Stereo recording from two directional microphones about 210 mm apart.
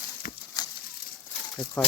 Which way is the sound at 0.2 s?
45° left (ahead or behind).